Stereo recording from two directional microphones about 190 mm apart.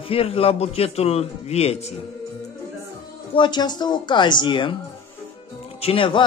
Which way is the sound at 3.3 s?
25° left (ahead or behind).